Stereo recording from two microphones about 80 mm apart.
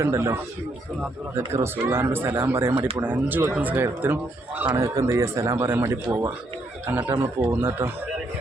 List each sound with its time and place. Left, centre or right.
0.0 s speech: right
1.5 s speech: right
4.7 s speech: right
5.5 s speech: right
5.8 s speech: right
6.9 s speech: right